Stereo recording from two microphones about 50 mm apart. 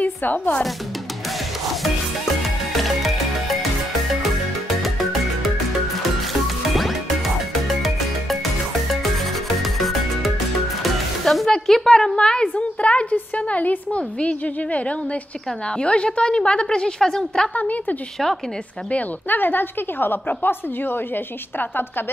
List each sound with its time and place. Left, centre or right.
0.0 s a woman's voice: left
6.4 s music: centre
11.6 s a sound: centre; by 13.0 s left
13.1 s a woman's voice: left; by 17.5 s centre
17.6 s a woman's voice: left